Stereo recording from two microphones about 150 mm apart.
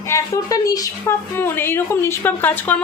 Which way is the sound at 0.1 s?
25° left (ahead or behind).